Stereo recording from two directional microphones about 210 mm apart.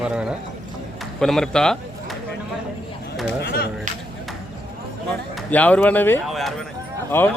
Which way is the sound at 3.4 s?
50° left (ahead or behind).